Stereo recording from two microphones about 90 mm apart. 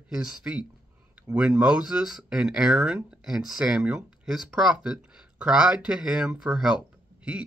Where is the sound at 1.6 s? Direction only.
10° right (ahead or behind).